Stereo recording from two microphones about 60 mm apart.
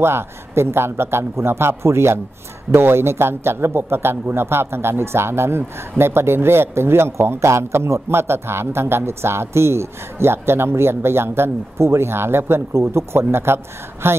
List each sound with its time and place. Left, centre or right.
0.0 s a man's voice: right